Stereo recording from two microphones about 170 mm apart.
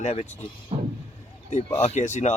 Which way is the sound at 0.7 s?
30° right (ahead or behind).